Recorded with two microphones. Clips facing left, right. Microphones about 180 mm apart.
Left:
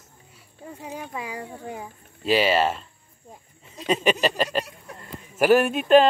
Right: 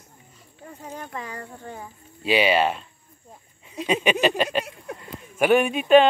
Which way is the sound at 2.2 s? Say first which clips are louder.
Even; centre (ahead or behind).